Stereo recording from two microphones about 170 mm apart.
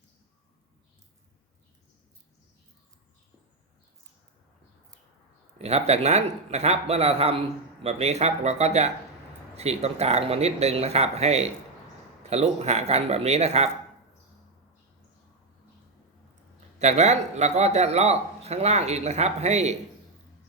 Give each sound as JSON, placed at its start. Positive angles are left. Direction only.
{"t": 5.5, "sound": "speech", "side_deg": -40}
{"t": 16.7, "sound": "speech", "side_deg": -40}